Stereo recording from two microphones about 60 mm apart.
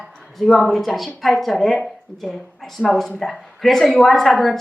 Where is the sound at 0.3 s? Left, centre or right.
Centre.